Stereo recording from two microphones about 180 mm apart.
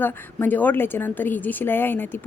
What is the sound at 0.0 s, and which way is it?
A woman's voice, 10° left (ahead or behind).